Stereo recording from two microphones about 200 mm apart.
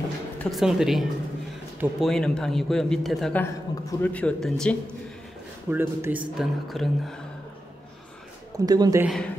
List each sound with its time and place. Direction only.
0.4 s a man's voice: centre (ahead or behind)
5.7 s a man's voice: 10° right (ahead or behind)
8.5 s speech: 20° right (ahead or behind)
9.0 s a man's voice: centre (ahead or behind)